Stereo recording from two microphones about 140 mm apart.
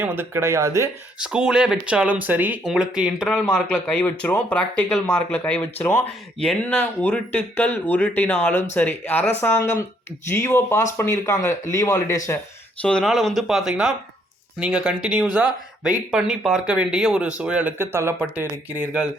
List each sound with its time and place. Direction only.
0.0 s speech: 15° right (ahead or behind)
1.2 s speech: 5° right (ahead or behind); by 12.2 s 20° left (ahead or behind)
12.8 s speech: 5° left (ahead or behind); by 19.0 s 15° right (ahead or behind)